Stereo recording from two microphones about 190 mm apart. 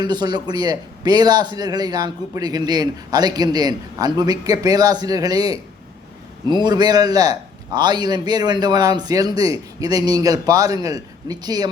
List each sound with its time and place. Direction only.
0.0 s a man's voice: 20° right (ahead or behind)